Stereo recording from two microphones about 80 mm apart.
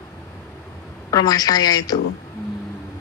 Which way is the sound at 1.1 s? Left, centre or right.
Left.